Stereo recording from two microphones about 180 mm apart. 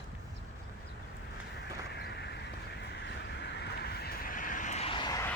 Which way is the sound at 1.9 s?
65° left (ahead or behind).